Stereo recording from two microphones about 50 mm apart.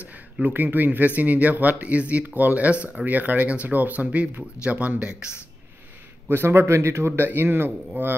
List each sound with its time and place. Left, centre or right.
0.0 s speech: right
6.2 s speech: right